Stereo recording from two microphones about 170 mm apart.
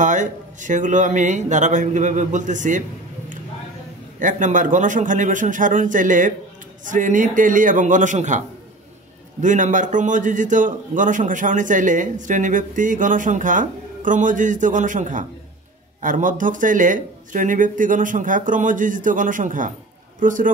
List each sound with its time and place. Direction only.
0.0 s a man's voice: 45° right (ahead or behind)
4.2 s a man's voice: 50° right (ahead or behind)